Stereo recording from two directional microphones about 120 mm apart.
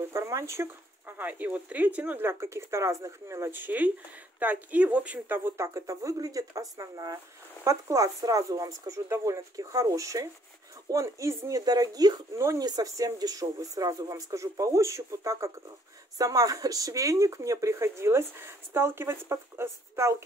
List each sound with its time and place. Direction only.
0.1 s speech: 25° right (ahead or behind)